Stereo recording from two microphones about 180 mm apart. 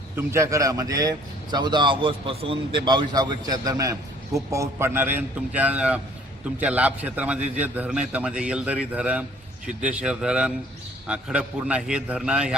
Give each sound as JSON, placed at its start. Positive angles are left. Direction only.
{"t": 0.2, "sound": "a man's voice", "side_deg": -15}